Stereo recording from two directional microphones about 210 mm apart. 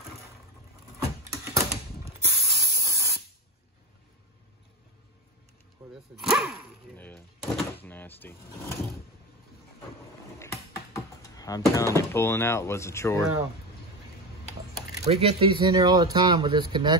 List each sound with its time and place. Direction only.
0.9 s typing: 15° right (ahead or behind)
2.4 s spray: 15° right (ahead or behind)
6.1 s speech: centre (ahead or behind)
11.3 s speech: 15° left (ahead or behind)
15.0 s speech: 30° right (ahead or behind)